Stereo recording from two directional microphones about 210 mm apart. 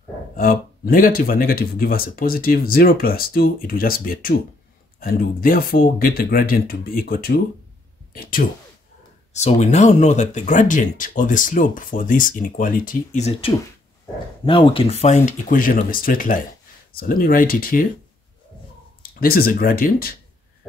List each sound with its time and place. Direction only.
0.4 s speech: 45° left (ahead or behind)
9.3 s speech: 30° left (ahead or behind)
19.0 s speech: 45° left (ahead or behind)